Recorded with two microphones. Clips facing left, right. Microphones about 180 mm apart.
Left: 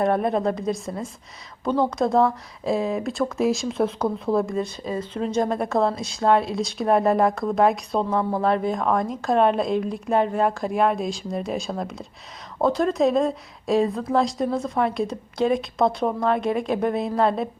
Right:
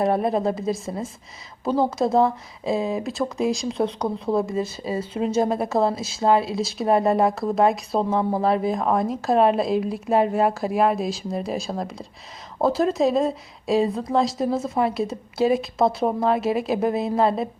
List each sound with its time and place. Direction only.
0.0 s speech: centre (ahead or behind)
8.2 s speech: 15° right (ahead or behind)